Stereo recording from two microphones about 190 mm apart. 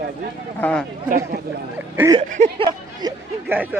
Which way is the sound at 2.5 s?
25° right (ahead or behind).